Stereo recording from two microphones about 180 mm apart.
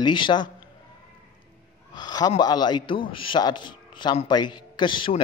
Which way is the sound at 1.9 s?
25° left (ahead or behind).